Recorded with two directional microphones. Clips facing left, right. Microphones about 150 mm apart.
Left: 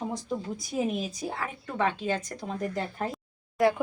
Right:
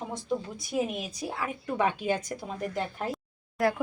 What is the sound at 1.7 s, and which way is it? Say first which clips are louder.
A woman's voice: right 1 dB; 15° right (ahead or behind).